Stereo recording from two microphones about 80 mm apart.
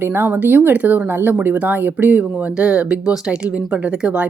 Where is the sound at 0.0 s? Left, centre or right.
Right.